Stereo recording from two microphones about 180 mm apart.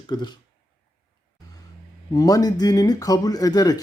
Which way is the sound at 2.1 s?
20° left (ahead or behind).